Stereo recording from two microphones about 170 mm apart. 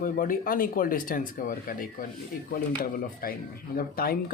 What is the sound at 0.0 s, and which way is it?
Speech, 55° left (ahead or behind).